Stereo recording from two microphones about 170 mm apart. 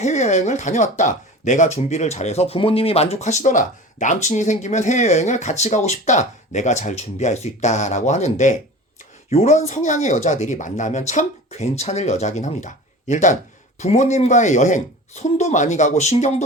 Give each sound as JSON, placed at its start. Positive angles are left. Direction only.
{"t": 0.0, "sound": "speech", "side_deg": 45}